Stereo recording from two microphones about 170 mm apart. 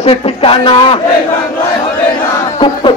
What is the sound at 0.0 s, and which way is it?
Speech, 30° left (ahead or behind).